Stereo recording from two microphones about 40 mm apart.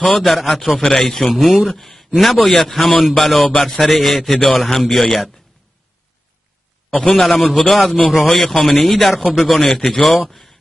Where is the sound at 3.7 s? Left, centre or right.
Centre.